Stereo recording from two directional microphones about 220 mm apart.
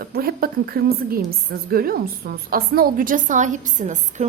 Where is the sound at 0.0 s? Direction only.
45° right (ahead or behind).